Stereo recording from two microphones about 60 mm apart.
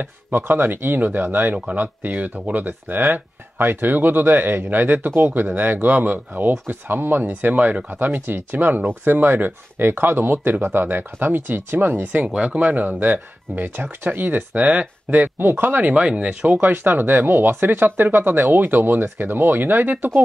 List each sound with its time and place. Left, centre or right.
0.0 s speech: right
12.0 s speech: right
12.6 s speech: right
14.6 s speech: right
15.9 s speech: centre
16.6 s speech: right